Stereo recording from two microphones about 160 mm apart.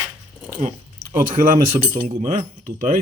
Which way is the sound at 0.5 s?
55° right (ahead or behind).